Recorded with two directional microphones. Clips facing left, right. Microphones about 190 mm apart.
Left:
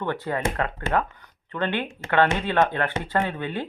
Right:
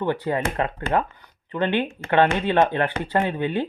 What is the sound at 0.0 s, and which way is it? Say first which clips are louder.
Speech: right 3 dB; 15° right (ahead or behind).